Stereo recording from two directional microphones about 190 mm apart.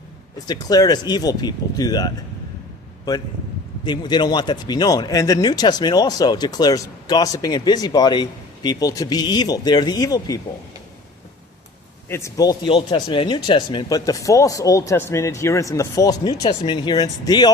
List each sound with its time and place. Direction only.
0.4 s speech: 20° left (ahead or behind)
3.8 s speech: 20° left (ahead or behind)
12.0 s speech: 15° left (ahead or behind)